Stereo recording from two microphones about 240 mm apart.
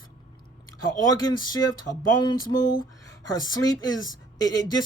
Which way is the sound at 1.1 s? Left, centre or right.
Centre.